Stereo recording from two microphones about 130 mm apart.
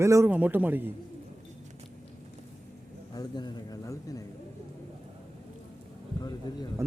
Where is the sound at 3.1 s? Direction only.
30° left (ahead or behind).